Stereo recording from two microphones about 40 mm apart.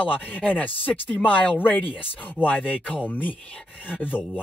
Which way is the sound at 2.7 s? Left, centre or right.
Left.